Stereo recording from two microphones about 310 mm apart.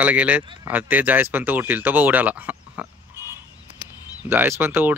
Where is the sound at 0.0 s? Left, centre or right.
Centre.